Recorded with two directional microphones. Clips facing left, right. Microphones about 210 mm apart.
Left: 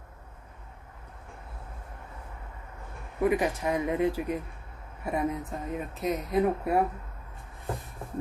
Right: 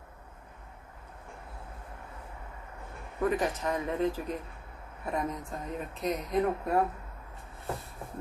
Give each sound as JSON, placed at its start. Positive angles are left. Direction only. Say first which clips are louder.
{"t": 3.2, "sound": "speech", "louder": "left 3 dB", "side_deg": 10}